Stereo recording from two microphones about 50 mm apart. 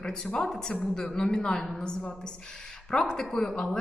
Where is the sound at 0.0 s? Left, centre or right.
Centre.